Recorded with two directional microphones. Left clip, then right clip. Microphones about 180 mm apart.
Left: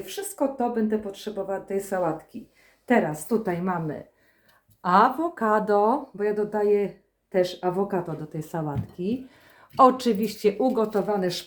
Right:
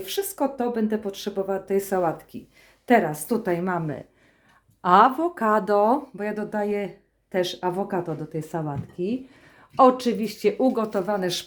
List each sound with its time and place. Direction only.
0.0 s speech: 55° right (ahead or behind); by 10.7 s 20° right (ahead or behind)
10.7 s speech: 35° right (ahead or behind)